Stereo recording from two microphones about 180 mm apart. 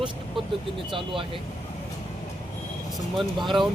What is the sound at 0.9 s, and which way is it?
Speech, 30° right (ahead or behind).